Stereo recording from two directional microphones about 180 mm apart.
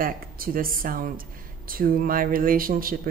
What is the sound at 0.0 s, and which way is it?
A woman's voice, 55° right (ahead or behind).